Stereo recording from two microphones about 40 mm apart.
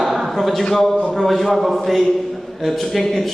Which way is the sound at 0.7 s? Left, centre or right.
Centre.